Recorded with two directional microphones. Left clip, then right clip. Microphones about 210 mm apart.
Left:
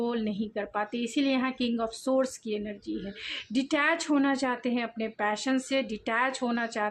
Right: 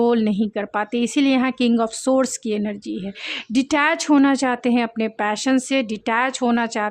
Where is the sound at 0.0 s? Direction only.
45° right (ahead or behind).